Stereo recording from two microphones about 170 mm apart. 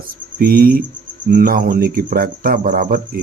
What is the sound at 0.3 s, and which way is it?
A man's voice, 60° right (ahead or behind).